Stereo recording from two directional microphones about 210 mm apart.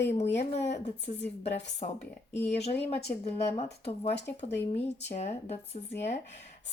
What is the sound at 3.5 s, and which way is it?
Speech, 30° left (ahead or behind).